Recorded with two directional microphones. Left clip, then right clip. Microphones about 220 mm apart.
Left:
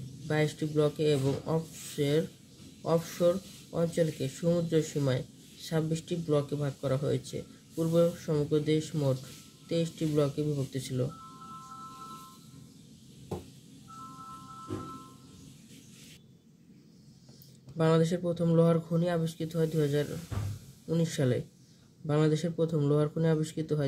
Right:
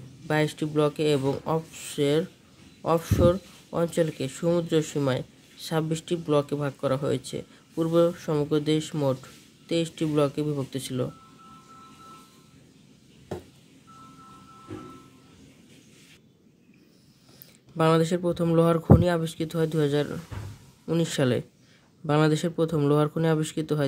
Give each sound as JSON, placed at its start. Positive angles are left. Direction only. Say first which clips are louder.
{"t": 0.3, "sound": "speech", "louder": "right 5 dB", "side_deg": -40}
{"t": 17.7, "sound": "speech", "louder": "right 5 dB", "side_deg": -35}